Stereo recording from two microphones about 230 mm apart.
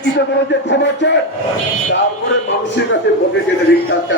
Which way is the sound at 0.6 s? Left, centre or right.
Left.